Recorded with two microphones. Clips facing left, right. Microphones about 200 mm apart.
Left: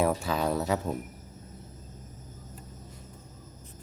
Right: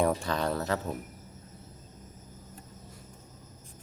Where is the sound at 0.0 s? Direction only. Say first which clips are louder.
Left 1 dB; 5° left (ahead or behind).